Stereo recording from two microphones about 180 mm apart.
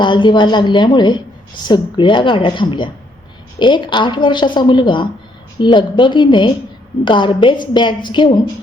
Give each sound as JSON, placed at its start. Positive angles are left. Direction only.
{"t": 0.0, "sound": "a woman's voice", "side_deg": 25}